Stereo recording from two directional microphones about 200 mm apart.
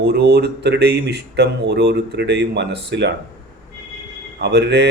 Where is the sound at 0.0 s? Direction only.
55° right (ahead or behind).